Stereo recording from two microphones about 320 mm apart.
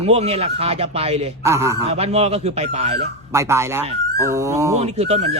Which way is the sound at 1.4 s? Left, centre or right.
Centre.